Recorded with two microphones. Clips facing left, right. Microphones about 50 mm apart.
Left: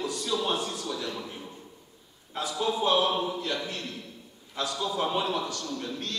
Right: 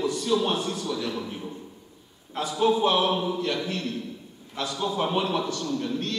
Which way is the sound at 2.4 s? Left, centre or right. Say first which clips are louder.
Right 5 dB; right.